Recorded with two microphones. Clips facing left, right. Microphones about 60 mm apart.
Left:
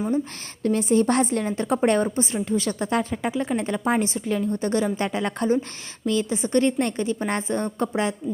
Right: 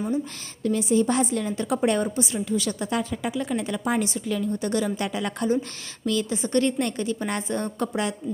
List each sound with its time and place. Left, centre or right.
0.6 s a woman's voice: left